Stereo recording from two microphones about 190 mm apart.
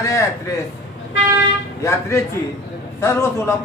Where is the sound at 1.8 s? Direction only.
15° left (ahead or behind).